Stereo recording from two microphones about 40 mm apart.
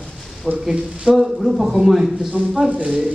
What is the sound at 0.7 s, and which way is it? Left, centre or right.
Speech, centre.